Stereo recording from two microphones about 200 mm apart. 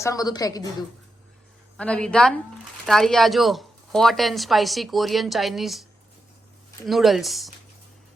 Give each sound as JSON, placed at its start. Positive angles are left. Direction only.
{"t": 0.0, "sound": "a woman's voice", "side_deg": 15}
{"t": 1.8, "sound": "speech", "side_deg": 5}
{"t": 6.8, "sound": "speech", "side_deg": 0}